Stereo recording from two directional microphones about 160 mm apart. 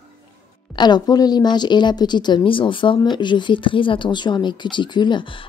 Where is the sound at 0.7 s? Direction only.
25° left (ahead or behind).